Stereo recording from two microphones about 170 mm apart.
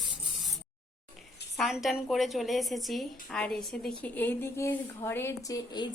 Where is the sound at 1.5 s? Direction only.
Centre (ahead or behind).